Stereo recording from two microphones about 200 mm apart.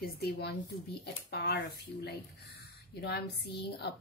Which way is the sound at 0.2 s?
50° left (ahead or behind).